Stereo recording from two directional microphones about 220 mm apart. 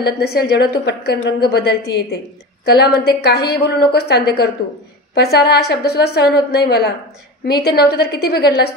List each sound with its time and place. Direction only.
0.0 s a woman's voice: 45° left (ahead or behind)